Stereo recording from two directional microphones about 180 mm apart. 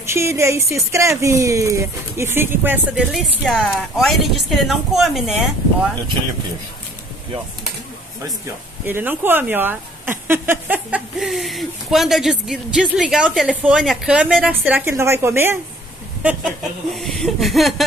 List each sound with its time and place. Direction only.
0.0 s speech: 15° right (ahead or behind)
8.8 s speech: 10° right (ahead or behind)